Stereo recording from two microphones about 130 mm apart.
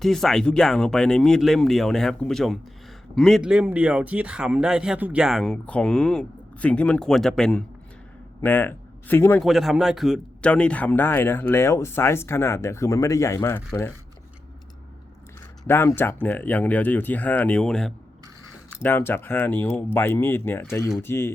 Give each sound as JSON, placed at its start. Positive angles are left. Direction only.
{"t": 0.0, "sound": "speech", "side_deg": 0}
{"t": 9.4, "sound": "speech", "side_deg": 0}
{"t": 15.6, "sound": "speech", "side_deg": 15}
{"t": 18.8, "sound": "speech", "side_deg": 15}